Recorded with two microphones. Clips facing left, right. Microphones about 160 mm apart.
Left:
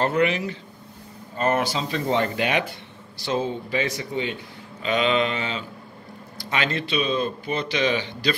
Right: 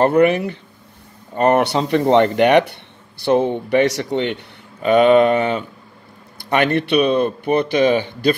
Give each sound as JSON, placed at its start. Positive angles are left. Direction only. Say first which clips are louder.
{"t": 0.0, "sound": "speech", "louder": "right 8 dB", "side_deg": -55}
{"t": 4.8, "sound": "speech", "louder": "right 10 dB", "side_deg": -55}